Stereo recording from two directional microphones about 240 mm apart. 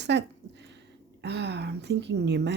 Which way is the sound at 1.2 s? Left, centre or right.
Right.